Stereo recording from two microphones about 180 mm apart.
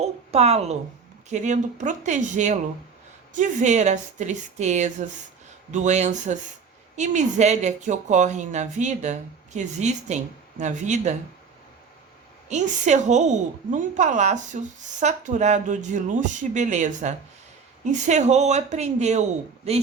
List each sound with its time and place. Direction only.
0.0 s a woman's voice: 35° right (ahead or behind)
12.5 s a woman's voice: 40° right (ahead or behind)